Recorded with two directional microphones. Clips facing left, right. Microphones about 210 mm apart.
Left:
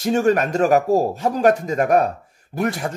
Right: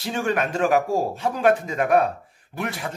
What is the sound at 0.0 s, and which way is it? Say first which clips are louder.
Speech: left 7 dB; 45° left (ahead or behind).